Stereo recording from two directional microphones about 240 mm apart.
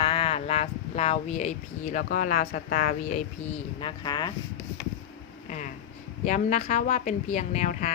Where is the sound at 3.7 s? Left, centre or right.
Centre.